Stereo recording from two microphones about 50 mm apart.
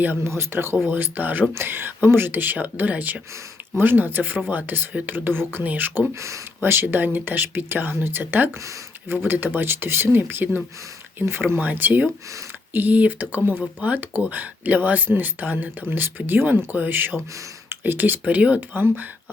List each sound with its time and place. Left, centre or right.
0.3 s speech: right
6.6 s speech: right
18.7 s speech: right